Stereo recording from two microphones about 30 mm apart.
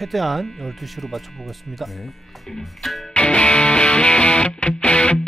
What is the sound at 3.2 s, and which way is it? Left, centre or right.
Music, left.